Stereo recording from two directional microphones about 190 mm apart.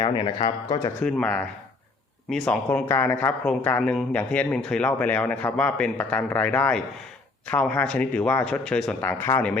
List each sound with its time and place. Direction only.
0.0 s speech: 20° left (ahead or behind)
1.0 s speech: 5° left (ahead or behind)